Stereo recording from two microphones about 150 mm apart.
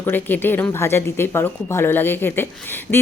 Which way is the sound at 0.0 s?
15° left (ahead or behind).